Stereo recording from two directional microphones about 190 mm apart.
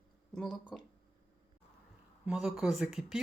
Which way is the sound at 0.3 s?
Centre (ahead or behind).